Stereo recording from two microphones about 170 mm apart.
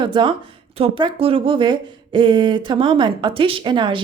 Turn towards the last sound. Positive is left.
turn(degrees=-30)  # may be behind; listen again after turning